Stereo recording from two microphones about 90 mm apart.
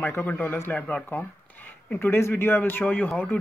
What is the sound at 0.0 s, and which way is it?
Speech, 20° left (ahead or behind).